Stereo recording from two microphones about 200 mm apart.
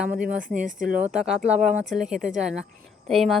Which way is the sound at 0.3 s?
40° right (ahead or behind).